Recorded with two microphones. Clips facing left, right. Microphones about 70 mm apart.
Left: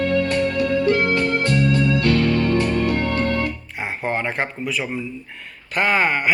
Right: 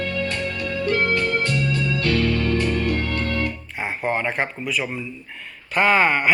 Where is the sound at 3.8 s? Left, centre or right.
Centre.